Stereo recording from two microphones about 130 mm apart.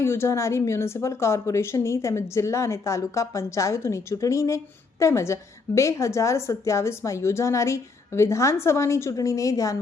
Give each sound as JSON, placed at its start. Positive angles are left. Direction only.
{"t": 0.0, "sound": "speech", "side_deg": 20}